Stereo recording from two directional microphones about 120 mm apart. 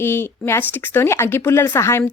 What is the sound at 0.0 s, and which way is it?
Speech, 20° left (ahead or behind).